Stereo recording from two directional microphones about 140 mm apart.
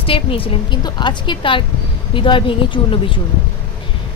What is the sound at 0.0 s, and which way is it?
Speech, 40° left (ahead or behind).